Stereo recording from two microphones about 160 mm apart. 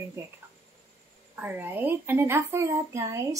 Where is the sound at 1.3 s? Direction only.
10° right (ahead or behind).